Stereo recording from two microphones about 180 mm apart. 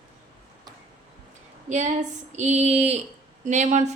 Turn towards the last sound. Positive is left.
turn(degrees=-40)  # may be behind; listen again after turning